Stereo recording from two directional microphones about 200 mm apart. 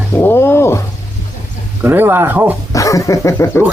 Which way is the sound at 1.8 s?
10° right (ahead or behind).